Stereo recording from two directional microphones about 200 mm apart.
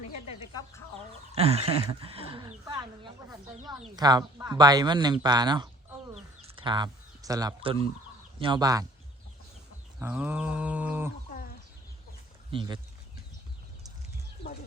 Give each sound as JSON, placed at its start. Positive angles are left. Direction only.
{"t": 1.3, "sound": "a sound", "side_deg": -30}
{"t": 3.9, "sound": "speech", "side_deg": -20}
{"t": 6.4, "sound": "a sound", "side_deg": -25}
{"t": 8.4, "sound": "speech", "side_deg": -25}
{"t": 10.0, "sound": "livestock", "side_deg": -10}
{"t": 12.5, "sound": "speech", "side_deg": -25}